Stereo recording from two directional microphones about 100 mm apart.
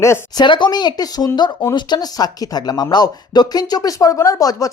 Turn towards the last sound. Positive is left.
turn(degrees=35)  # may be behind; listen again after turning